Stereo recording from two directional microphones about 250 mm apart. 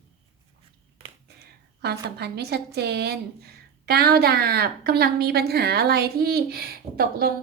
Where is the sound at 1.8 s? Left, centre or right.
Right.